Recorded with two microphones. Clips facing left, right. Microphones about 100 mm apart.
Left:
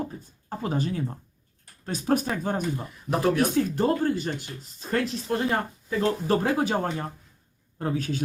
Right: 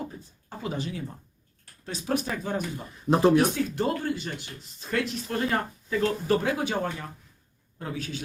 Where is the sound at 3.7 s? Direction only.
40° left (ahead or behind).